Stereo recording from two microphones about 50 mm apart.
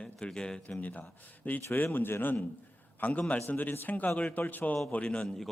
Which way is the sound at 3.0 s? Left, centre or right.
Left.